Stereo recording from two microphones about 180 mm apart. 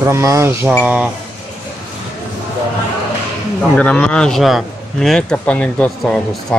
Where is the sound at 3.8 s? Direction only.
5° left (ahead or behind).